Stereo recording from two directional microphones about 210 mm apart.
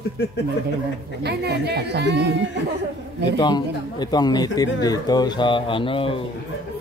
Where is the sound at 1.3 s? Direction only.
50° right (ahead or behind).